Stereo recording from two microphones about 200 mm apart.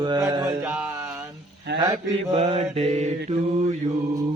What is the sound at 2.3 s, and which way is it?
Speech, 30° right (ahead or behind).